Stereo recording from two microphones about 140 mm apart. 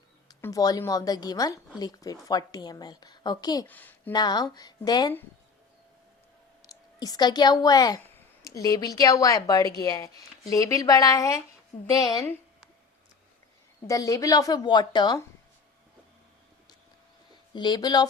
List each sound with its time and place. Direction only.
0.4 s a woman's voice: 25° left (ahead or behind)
3.7 s a woman's voice: 15° left (ahead or behind)
4.1 s a woman's voice: 30° left (ahead or behind)
6.7 s a woman's voice: 30° left (ahead or behind)
13.8 s a woman's voice: 25° left (ahead or behind)
17.5 s a woman's voice: 30° left (ahead or behind)